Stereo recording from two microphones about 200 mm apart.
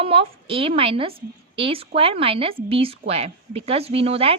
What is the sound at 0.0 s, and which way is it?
Speech, 25° right (ahead or behind).